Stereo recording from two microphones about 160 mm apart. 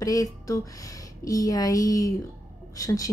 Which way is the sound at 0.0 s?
20° left (ahead or behind).